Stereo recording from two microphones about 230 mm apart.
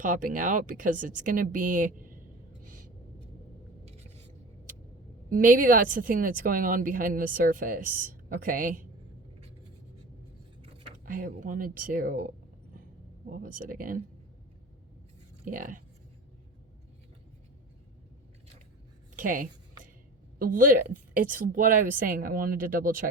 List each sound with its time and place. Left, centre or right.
0.0 s a woman's voice: right
2.6 s a sound: right
5.3 s a woman's voice: right
10.6 s speech: right
13.3 s a woman's voice: right
15.4 s a woman's voice: right
19.1 s a sound: right
20.4 s a woman's voice: right